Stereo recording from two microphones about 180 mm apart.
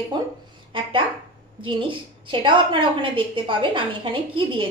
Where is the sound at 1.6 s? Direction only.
30° right (ahead or behind).